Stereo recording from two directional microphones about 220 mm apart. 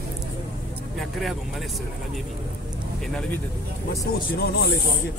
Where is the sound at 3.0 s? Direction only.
5° left (ahead or behind).